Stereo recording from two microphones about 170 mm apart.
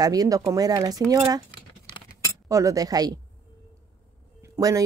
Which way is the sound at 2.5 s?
20° right (ahead or behind).